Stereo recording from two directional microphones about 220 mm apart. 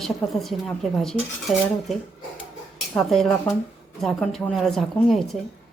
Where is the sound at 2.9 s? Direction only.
Centre (ahead or behind).